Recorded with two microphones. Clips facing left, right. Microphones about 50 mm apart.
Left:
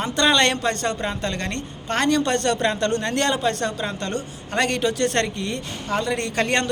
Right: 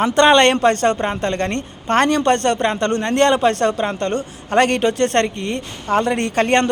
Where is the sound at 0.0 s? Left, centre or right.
Right.